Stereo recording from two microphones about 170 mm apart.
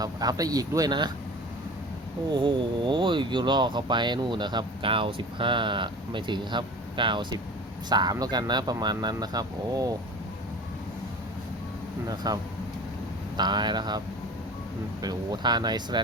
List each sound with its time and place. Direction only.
0.0 s speech: 20° right (ahead or behind)
2.3 s speech: 30° right (ahead or behind)
12.0 s speech: 20° right (ahead or behind)
15.0 s speech: 25° right (ahead or behind)